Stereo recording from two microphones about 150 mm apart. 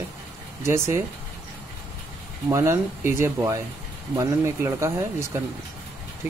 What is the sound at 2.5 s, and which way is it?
Speech, 20° right (ahead or behind).